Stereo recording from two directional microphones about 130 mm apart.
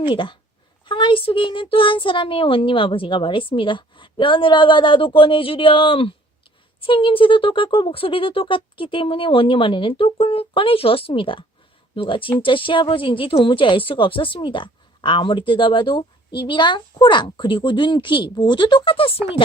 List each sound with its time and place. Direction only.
0.1 s a woman's voice: 40° left (ahead or behind)